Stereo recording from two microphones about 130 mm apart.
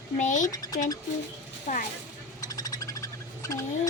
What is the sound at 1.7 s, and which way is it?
Speech, 70° left (ahead or behind).